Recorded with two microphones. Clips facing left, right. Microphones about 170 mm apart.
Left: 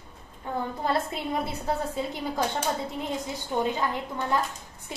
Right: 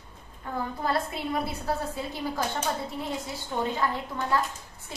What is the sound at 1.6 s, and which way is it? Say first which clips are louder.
Speech: left 2 dB; 20° left (ahead or behind).